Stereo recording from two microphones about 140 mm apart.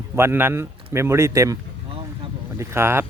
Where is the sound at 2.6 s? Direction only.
20° right (ahead or behind).